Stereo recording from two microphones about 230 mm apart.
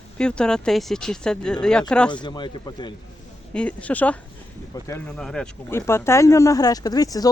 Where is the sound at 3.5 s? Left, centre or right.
Centre.